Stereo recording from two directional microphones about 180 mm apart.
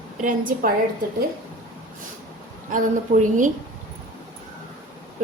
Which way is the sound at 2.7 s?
45° right (ahead or behind).